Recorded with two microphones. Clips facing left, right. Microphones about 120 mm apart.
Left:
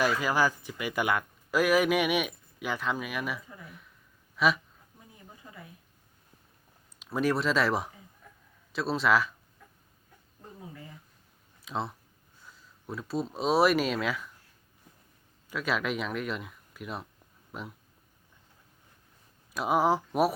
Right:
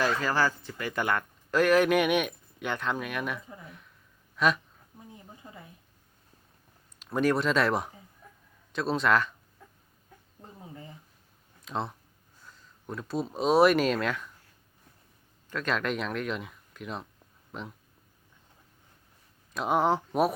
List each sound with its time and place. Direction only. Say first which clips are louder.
0.0 s speech: even; 10° left (ahead or behind)
5.4 s a sound: right 2 dB; 25° right (ahead or behind)
7.0 s speech: right 2 dB; centre (ahead or behind)
11.6 s speech: right 1 dB; centre (ahead or behind)
15.4 s speech: right 1 dB; 5° left (ahead or behind)
19.5 s speech: even; 5° left (ahead or behind)